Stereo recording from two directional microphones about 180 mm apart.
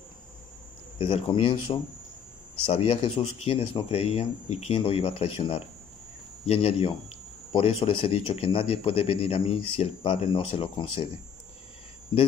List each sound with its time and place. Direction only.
0.9 s a man's voice: 30° left (ahead or behind)